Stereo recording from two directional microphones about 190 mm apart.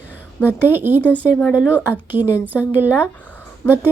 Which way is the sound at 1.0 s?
10° left (ahead or behind).